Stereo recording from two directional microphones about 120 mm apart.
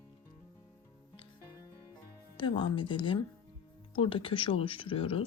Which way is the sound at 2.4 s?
40° left (ahead or behind).